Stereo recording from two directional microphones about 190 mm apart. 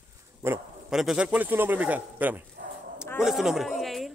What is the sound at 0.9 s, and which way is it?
A man's voice, 5° right (ahead or behind).